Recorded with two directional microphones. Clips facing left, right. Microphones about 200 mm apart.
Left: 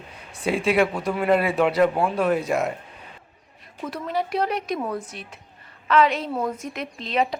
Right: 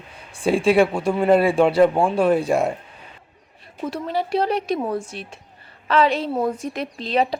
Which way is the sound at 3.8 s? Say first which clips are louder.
Right 2 dB; 30° right (ahead or behind).